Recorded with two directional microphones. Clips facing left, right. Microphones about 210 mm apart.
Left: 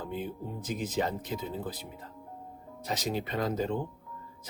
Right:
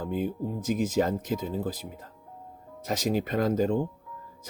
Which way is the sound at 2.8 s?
50° right (ahead or behind).